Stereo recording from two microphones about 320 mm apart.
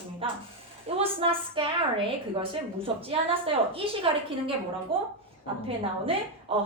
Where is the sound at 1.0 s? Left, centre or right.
Centre.